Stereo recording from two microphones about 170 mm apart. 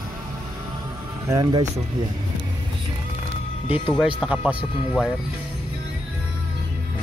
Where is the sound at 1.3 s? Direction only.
25° right (ahead or behind).